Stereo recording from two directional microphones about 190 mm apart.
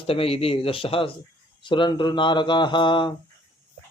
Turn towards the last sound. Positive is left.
turn(degrees=25)  # may be behind; listen again after turning